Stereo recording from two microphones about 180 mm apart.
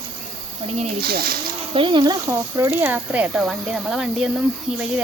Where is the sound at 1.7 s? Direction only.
25° right (ahead or behind).